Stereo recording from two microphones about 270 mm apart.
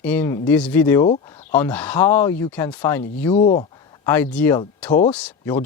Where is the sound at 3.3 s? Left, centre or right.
Left.